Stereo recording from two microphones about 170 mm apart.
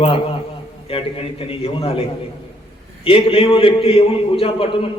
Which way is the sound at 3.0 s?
35° left (ahead or behind).